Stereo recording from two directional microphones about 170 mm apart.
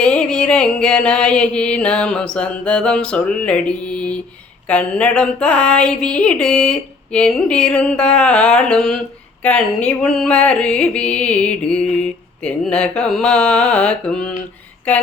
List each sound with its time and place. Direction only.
0.0 s music: 5° left (ahead or behind)